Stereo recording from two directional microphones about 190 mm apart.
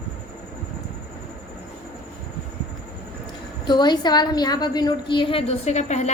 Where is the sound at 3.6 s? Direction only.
20° left (ahead or behind).